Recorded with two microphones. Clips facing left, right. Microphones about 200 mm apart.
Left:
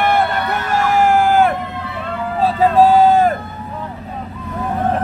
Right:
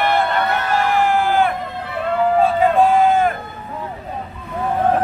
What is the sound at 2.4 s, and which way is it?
Vehicle, 35° left (ahead or behind).